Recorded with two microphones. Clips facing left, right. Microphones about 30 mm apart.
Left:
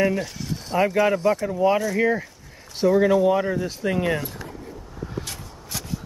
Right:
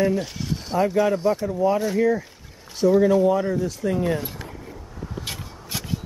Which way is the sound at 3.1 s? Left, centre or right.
Left.